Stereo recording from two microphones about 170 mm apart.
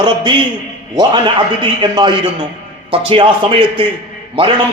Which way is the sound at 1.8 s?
25° right (ahead or behind).